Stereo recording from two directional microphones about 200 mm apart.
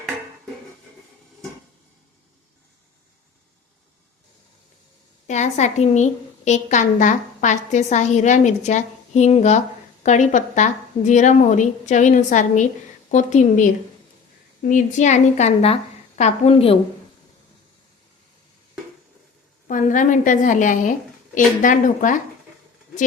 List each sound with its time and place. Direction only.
5.3 s a woman's voice: 35° left (ahead or behind)
19.6 s a woman's voice: 40° left (ahead or behind)